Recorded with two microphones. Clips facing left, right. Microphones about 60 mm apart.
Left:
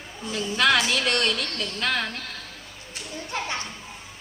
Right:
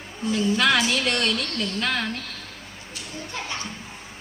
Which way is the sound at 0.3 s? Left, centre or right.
Centre.